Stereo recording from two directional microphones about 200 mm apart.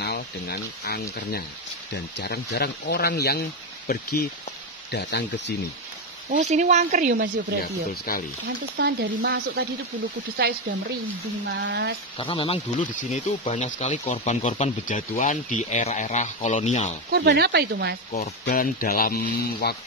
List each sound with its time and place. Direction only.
0.0 s speech: 55° left (ahead or behind)
2.1 s speech: 55° left (ahead or behind)
6.3 s speech: 35° right (ahead or behind)
7.6 s speech: 50° left (ahead or behind)
8.7 s speech: 60° right (ahead or behind)
11.4 s speech: 60° right (ahead or behind)
12.2 s speech: 25° left (ahead or behind)
17.1 s speech: 50° right (ahead or behind)
18.5 s speech: 45° left (ahead or behind)